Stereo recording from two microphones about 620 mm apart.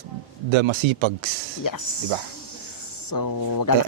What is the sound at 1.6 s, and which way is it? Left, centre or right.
Speech, left.